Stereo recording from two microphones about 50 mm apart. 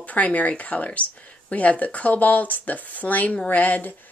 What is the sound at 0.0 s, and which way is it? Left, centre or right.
Speech, left.